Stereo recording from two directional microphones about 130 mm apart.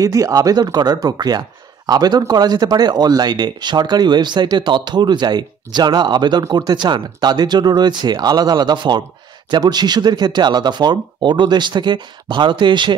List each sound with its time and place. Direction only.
0.0 s speech: 25° right (ahead or behind)